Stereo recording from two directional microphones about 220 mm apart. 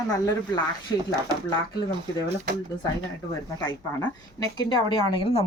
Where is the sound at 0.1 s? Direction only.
20° left (ahead or behind).